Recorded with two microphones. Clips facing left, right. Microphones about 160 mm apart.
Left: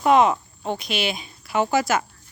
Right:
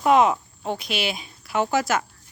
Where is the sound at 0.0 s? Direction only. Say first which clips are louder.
Left 1 dB; 5° right (ahead or behind).